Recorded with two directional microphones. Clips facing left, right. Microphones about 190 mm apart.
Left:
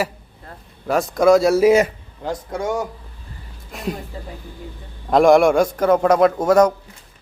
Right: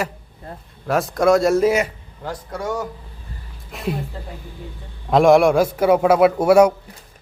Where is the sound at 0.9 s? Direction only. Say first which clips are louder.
Left 2 dB; centre (ahead or behind).